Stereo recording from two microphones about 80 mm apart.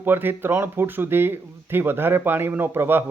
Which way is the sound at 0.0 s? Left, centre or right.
Right.